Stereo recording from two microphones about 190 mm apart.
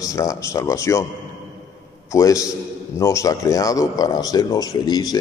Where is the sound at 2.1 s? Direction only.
15° left (ahead or behind).